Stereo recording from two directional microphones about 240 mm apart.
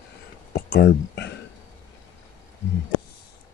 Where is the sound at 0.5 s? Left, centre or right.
Left.